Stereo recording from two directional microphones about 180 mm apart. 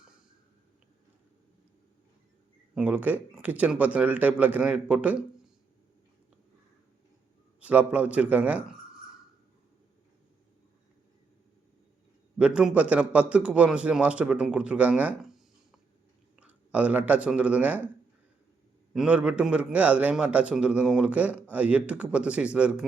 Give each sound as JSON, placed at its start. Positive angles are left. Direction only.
{"t": 2.7, "sound": "a man's voice", "side_deg": -10}
{"t": 7.6, "sound": "a man's voice", "side_deg": -10}
{"t": 12.4, "sound": "a man's voice", "side_deg": -5}
{"t": 18.9, "sound": "a man's voice", "side_deg": -5}